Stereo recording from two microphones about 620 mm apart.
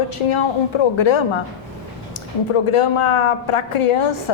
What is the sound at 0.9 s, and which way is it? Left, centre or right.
Speech, left.